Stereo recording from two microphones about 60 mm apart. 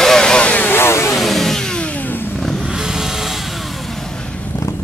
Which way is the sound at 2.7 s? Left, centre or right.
Centre.